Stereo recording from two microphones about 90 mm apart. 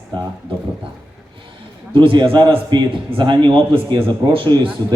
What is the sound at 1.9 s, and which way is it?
Speech, 70° right (ahead or behind).